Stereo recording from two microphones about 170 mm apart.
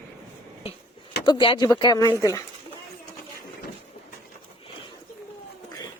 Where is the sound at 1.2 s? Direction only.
30° left (ahead or behind).